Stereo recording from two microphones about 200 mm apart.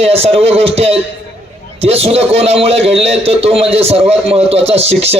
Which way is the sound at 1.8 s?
30° right (ahead or behind).